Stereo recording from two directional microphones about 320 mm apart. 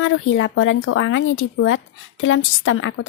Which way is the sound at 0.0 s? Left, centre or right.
Left.